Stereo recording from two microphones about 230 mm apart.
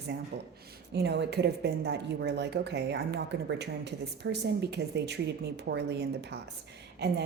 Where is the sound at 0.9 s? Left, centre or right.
Right.